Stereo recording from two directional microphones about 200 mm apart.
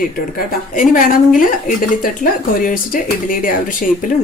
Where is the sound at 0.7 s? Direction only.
40° left (ahead or behind).